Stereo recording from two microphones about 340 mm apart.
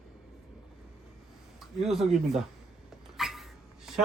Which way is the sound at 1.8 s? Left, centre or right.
Centre.